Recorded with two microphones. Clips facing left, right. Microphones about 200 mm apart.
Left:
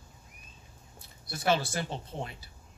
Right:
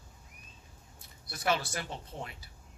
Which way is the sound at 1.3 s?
30° left (ahead or behind).